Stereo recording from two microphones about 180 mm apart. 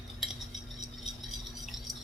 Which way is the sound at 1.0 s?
Centre (ahead or behind).